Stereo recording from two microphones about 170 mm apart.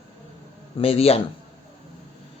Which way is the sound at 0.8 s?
35° left (ahead or behind).